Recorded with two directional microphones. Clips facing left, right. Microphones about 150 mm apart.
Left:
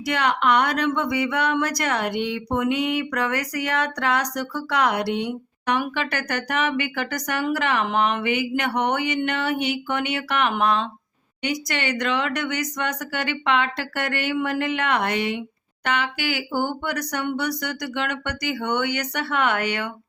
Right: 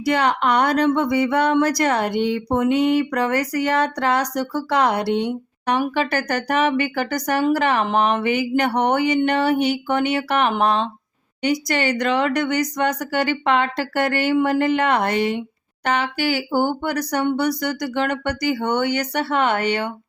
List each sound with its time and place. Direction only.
0.0 s a woman's voice: 35° right (ahead or behind)